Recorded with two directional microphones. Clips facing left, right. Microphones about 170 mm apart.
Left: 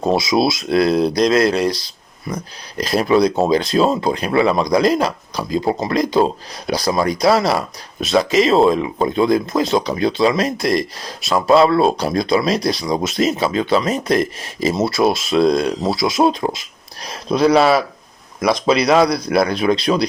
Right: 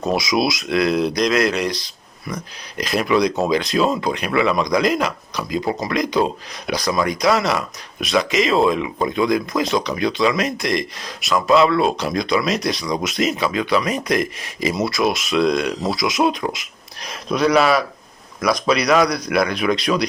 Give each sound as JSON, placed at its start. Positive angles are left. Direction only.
{"t": 0.0, "sound": "speech", "side_deg": 25}